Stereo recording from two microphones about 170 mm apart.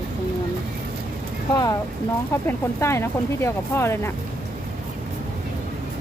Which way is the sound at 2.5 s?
15° left (ahead or behind).